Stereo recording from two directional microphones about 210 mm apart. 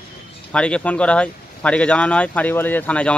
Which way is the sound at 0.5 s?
5° left (ahead or behind).